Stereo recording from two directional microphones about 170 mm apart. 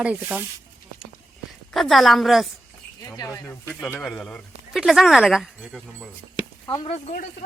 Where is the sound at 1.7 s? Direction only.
Centre (ahead or behind).